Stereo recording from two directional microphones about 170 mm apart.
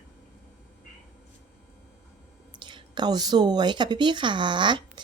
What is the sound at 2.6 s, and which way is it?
A woman's voice, 25° right (ahead or behind).